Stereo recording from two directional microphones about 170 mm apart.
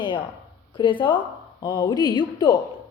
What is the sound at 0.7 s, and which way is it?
A woman's voice, 30° left (ahead or behind).